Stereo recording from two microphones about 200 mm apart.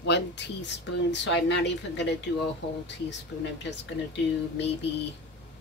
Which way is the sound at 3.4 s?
60° left (ahead or behind).